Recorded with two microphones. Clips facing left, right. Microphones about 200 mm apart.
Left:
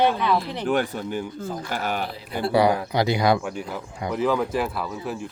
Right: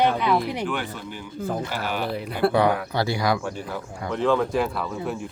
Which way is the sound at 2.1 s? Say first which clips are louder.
Right 9 dB; 60° right (ahead or behind).